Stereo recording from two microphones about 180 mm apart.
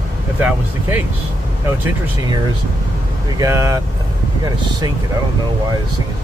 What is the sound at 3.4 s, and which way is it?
Speech, 15° right (ahead or behind).